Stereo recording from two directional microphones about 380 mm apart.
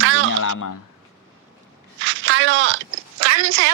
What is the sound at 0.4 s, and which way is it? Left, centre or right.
Speech, left.